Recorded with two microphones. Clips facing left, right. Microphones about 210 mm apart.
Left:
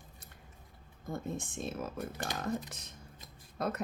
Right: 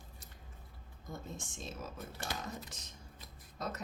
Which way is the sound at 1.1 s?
55° left (ahead or behind).